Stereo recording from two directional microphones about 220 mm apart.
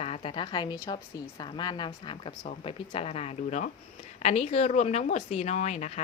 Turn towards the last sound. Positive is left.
turn(degrees=30)  # may be behind; listen again after turning